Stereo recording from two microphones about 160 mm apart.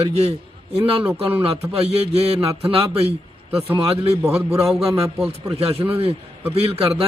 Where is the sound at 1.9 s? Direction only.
40° right (ahead or behind).